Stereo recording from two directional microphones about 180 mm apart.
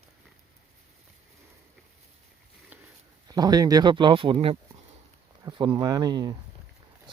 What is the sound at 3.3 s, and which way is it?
Speech, 20° right (ahead or behind).